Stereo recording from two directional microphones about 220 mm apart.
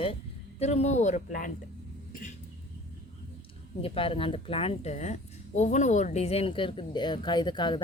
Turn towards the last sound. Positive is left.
turn(degrees=20)  # may be behind; listen again after turning